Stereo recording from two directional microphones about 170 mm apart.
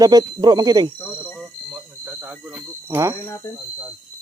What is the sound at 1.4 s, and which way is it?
Cricket, 10° right (ahead or behind).